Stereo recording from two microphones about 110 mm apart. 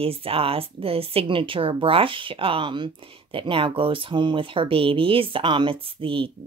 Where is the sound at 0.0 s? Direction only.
60° right (ahead or behind).